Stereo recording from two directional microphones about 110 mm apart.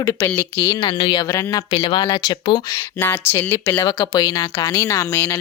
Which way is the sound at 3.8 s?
45° left (ahead or behind).